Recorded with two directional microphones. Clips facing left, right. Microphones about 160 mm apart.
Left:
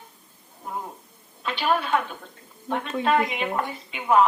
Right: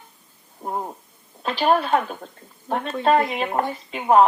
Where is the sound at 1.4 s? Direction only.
40° right (ahead or behind).